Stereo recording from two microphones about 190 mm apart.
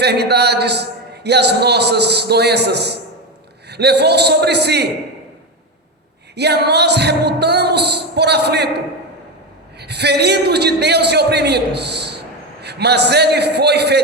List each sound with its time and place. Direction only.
0.0 s a man's voice: 60° right (ahead or behind)
6.3 s a man's voice: 60° right (ahead or behind)